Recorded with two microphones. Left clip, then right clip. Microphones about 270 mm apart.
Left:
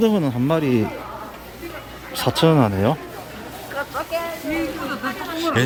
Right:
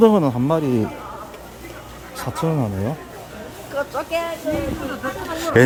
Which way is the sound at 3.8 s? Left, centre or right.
Right.